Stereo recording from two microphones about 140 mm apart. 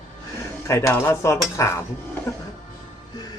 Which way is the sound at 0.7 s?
20° left (ahead or behind).